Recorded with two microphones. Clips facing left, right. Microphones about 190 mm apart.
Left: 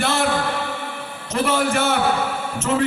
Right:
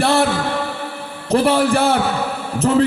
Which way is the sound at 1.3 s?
35° right (ahead or behind).